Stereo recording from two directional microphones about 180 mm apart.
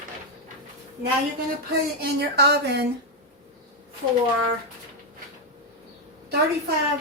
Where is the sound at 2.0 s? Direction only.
65° right (ahead or behind).